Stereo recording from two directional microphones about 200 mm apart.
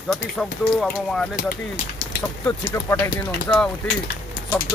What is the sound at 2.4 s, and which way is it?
Speech, 15° left (ahead or behind).